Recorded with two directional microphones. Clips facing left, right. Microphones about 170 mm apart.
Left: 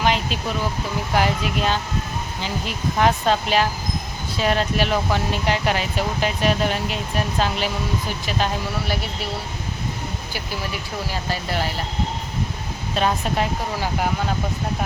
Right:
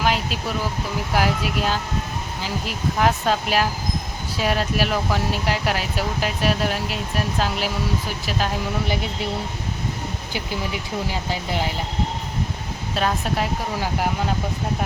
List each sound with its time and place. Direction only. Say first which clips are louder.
0.0 s speech: left 1 dB; 5° right (ahead or behind)
10.3 s speech: right 3 dB; 15° right (ahead or behind)
13.0 s speech: left 1 dB; centre (ahead or behind)